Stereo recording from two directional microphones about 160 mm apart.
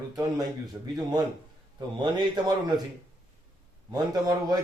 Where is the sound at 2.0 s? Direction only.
25° right (ahead or behind).